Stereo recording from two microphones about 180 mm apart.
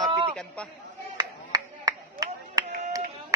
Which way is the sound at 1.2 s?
20° right (ahead or behind).